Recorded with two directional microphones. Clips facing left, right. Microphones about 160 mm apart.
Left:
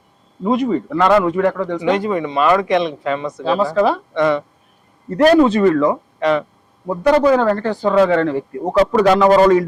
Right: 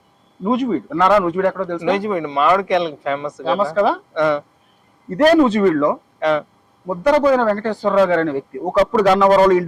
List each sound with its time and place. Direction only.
0.5 s speech: 15° left (ahead or behind)